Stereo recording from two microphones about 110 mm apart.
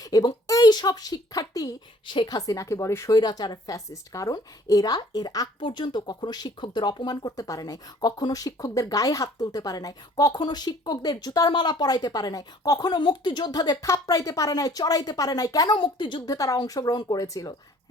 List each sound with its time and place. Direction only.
0.0 s speech: 35° left (ahead or behind)
12.9 s speech: 45° left (ahead or behind)